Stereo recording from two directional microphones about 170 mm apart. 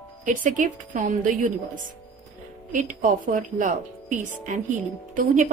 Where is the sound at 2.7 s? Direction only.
50° right (ahead or behind).